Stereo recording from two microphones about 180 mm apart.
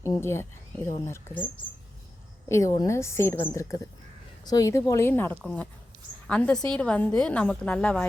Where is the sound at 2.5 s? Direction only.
15° left (ahead or behind).